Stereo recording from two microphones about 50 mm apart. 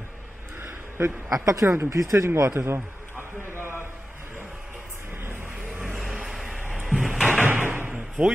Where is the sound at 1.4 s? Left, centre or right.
Right.